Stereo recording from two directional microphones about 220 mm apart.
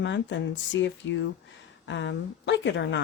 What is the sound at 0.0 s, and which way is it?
Speech, 55° left (ahead or behind).